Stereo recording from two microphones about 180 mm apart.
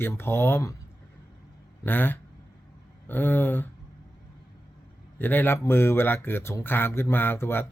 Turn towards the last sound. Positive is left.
turn(degrees=10)  # may be behind; listen again after turning